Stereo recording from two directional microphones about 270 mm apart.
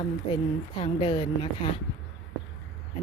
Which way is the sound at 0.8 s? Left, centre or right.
Centre.